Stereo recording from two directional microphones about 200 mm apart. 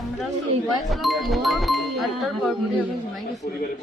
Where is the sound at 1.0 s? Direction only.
Centre (ahead or behind).